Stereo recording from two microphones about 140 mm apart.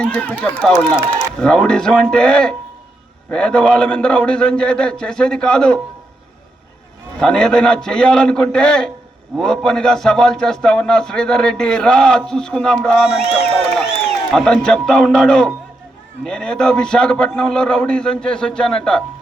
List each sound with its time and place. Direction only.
0.0 s a man's voice: 10° left (ahead or behind)
7.2 s a man's voice: 5° left (ahead or behind)
14.3 s a man's voice: 5° left (ahead or behind)